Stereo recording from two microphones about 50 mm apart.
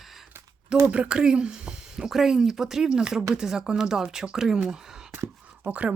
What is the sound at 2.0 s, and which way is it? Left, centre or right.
Speech, centre.